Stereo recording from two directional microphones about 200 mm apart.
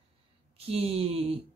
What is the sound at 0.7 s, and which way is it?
Speech, 30° right (ahead or behind).